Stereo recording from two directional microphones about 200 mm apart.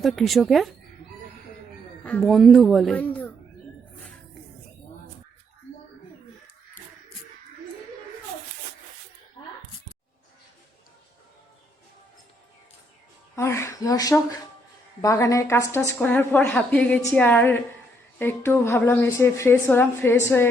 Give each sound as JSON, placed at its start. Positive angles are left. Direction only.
{"t": 0.0, "sound": "speech", "side_deg": 0}
{"t": 2.0, "sound": "speech", "side_deg": 5}
{"t": 13.3, "sound": "a woman's voice", "side_deg": 15}